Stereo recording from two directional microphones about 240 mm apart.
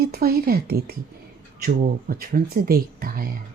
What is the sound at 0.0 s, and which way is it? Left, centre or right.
Speech, right.